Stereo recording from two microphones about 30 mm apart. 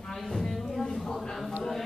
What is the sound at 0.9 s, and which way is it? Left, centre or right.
Speech, centre.